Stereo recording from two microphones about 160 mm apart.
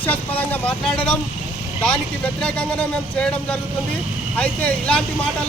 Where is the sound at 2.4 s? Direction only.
5° left (ahead or behind).